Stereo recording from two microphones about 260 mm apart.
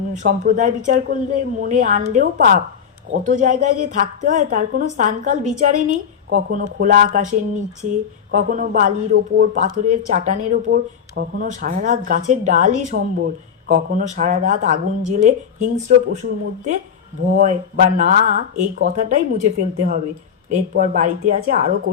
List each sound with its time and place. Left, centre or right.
0.1 s a woman's voice: right
17.3 s a woman's voice: right